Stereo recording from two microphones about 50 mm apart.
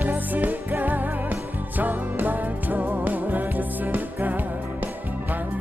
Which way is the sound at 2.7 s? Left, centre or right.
Right.